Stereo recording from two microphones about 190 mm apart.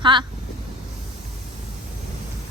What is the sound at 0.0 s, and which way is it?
Speech, 25° right (ahead or behind).